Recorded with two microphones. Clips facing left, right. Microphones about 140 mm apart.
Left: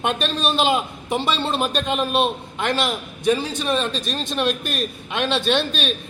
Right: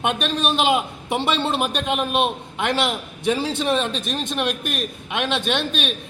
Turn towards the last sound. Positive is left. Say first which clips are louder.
# left 2 dB
turn(degrees=-20)  # may be behind; listen again after turning